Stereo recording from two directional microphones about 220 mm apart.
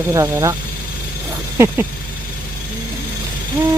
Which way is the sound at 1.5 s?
10° right (ahead or behind).